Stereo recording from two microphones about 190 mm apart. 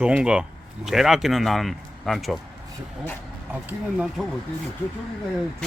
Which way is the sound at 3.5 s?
10° right (ahead or behind).